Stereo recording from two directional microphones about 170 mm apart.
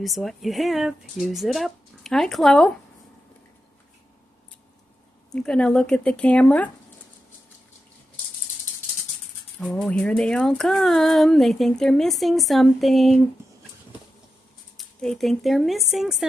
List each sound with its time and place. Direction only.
0.0 s speech: centre (ahead or behind)
5.3 s speech: 5° left (ahead or behind)
9.6 s speech: 5° left (ahead or behind)
14.8 s speech: centre (ahead or behind)